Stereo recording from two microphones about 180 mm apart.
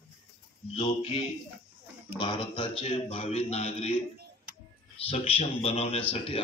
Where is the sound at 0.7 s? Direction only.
30° left (ahead or behind).